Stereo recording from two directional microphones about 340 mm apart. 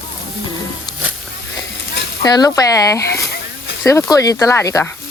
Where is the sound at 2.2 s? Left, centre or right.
Centre.